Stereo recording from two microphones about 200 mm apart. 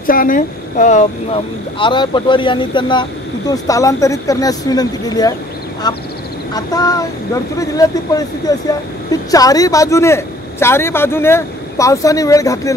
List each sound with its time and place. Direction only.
0.0 s speech: 45° left (ahead or behind); by 12.7 s 15° left (ahead or behind)